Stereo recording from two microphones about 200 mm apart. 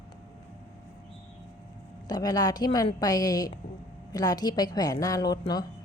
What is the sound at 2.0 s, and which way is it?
A woman's voice, 20° left (ahead or behind).